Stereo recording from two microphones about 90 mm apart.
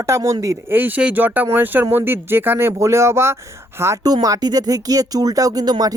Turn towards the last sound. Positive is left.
turn(degrees=-45)  # may be behind; listen again after turning